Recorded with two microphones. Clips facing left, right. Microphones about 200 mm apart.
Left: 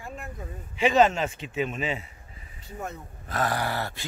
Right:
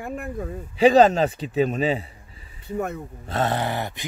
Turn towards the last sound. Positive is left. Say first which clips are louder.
# right 3 dB
turn(degrees=-20)  # may be behind; listen again after turning